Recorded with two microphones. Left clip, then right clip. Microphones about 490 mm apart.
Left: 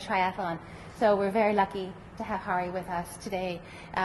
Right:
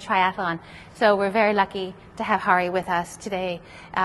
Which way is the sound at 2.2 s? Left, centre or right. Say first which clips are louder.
Right 10 dB; right.